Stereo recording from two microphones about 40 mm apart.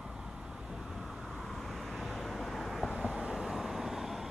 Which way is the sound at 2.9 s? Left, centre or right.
Centre.